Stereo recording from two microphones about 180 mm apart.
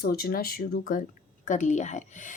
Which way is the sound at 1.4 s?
45° left (ahead or behind).